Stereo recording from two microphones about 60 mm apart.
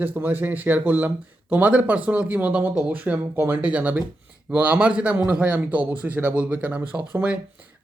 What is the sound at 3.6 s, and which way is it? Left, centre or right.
Speech, right.